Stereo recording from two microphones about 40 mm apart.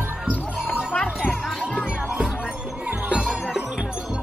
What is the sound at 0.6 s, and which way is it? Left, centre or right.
Music, centre.